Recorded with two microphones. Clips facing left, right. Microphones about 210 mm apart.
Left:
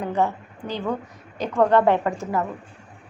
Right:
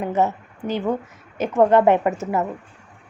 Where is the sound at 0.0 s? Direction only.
20° right (ahead or behind).